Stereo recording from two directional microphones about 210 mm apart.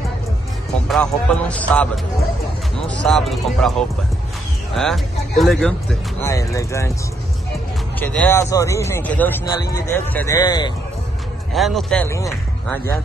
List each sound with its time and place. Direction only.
0.8 s speech: 5° left (ahead or behind)
3.1 s speech: centre (ahead or behind)
8.0 s speech: 5° left (ahead or behind)
11.5 s speech: centre (ahead or behind)